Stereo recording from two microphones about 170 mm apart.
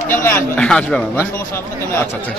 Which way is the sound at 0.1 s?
15° left (ahead or behind).